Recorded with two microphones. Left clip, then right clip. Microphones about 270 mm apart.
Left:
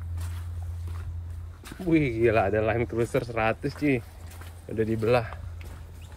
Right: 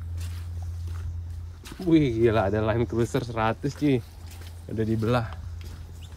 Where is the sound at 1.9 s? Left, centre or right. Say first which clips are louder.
Right 1 dB; centre.